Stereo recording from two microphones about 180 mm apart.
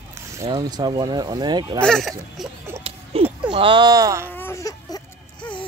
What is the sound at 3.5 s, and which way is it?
Speech, 25° right (ahead or behind).